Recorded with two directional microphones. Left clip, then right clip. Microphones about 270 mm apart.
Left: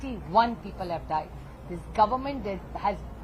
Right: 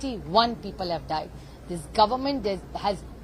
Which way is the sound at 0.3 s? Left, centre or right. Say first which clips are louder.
Right 1 dB; right.